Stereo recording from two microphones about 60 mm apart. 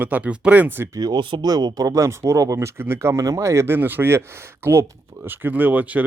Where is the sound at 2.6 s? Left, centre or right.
Right.